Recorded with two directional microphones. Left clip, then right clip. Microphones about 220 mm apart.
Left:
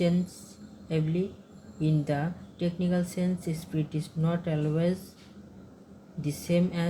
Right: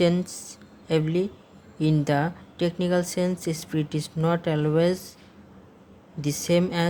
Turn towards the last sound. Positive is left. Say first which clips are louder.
# right 6 dB
turn(degrees=-50)  # may be behind; listen again after turning